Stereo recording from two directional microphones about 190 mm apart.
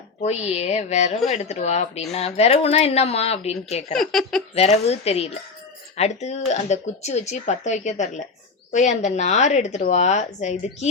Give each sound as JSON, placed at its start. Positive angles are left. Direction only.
{"t": 0.2, "sound": "speech", "side_deg": 35}
{"t": 3.9, "sound": "speech", "side_deg": 0}
{"t": 4.5, "sound": "speech", "side_deg": 35}